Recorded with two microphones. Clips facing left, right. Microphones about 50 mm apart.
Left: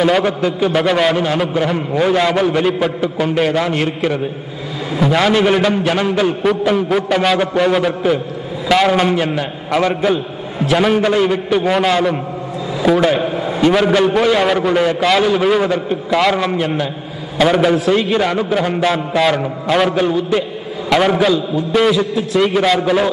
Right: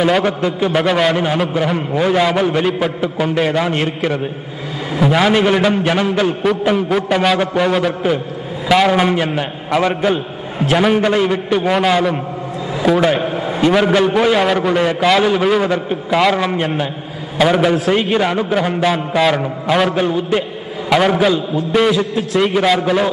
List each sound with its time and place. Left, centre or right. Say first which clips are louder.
0.0 s a man's voice: left 1 dB; centre
1.1 s a man's voice: even; centre
1.4 s a man's voice: even; centre
4.9 s a man's voice: even; centre
9.1 s a man's voice: even; centre
9.7 s a man's voice: even; centre
10.1 s a man's voice: left 1 dB; right
10.8 s a man's voice: even; centre
13.7 s a man's voice: even; centre
22.4 s a man's voice: even; centre